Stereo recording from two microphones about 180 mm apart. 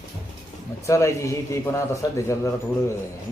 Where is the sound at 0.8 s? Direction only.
15° left (ahead or behind).